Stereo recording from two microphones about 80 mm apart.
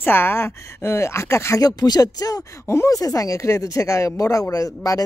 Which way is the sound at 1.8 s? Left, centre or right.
Left.